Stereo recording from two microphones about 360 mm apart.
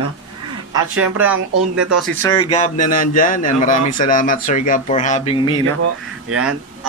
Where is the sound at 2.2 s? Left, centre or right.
Centre.